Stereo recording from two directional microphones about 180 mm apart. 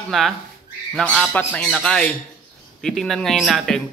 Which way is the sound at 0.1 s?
Centre (ahead or behind).